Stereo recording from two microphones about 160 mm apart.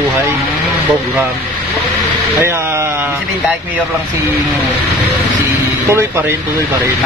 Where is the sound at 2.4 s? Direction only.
15° right (ahead or behind).